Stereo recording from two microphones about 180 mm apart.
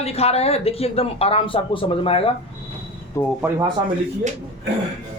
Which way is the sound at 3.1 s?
15° left (ahead or behind).